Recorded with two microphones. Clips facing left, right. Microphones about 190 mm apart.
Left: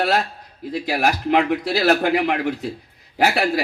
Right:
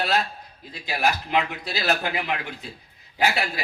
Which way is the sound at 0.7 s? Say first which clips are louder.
Left 5 dB; 90° left.